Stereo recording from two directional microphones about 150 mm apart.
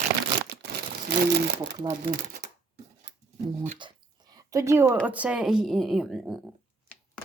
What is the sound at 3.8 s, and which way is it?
A woman's voice, 30° right (ahead or behind).